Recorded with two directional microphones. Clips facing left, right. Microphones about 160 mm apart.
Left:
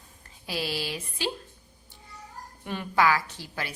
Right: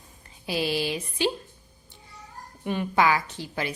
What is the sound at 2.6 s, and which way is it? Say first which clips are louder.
A woman's voice: right 2 dB; 20° right (ahead or behind).